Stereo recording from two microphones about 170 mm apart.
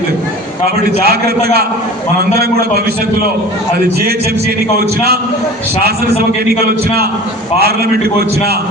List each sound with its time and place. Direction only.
1.0 s a man's voice: 65° right (ahead or behind)
4.0 s a man's voice: 65° right (ahead or behind)
7.6 s a man's voice: 65° right (ahead or behind)